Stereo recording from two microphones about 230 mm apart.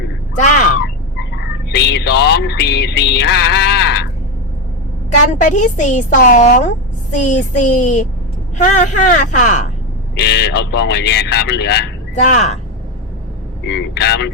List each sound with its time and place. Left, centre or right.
0.3 s a woman's voice: left
1.7 s a sound: left
5.3 s a woman's voice: left
10.2 s a man's voice: left
12.1 s a woman's voice: left
13.7 s a man's voice: left